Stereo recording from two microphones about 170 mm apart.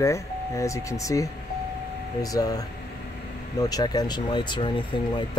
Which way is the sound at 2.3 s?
20° left (ahead or behind).